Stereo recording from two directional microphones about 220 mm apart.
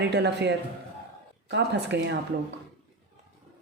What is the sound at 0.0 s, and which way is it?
Speech, 50° right (ahead or behind).